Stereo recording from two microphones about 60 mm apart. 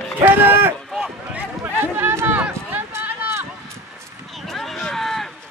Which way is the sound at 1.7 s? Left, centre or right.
Right.